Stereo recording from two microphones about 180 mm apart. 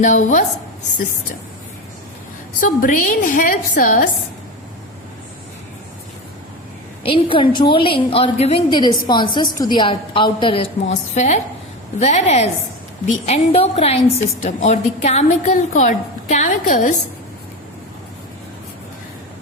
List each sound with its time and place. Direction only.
0.0 s a woman's voice: 40° left (ahead or behind)
2.6 s a woman's voice: 50° left (ahead or behind)
7.0 s a woman's voice: 30° left (ahead or behind); by 16.9 s 45° left (ahead or behind)